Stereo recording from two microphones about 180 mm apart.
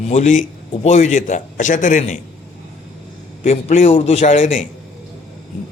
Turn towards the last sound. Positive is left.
turn(degrees=40)  # may be behind; listen again after turning